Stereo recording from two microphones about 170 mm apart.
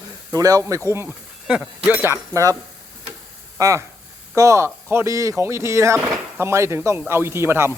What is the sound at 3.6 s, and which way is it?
A man's voice, 20° right (ahead or behind).